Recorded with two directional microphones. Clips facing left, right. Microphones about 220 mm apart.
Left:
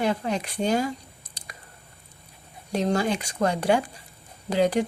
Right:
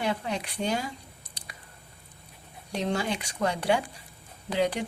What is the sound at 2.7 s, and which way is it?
A woman's voice, 40° left (ahead or behind).